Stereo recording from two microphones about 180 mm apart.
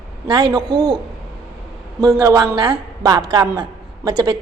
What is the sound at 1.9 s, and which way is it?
A woman's voice, 20° right (ahead or behind).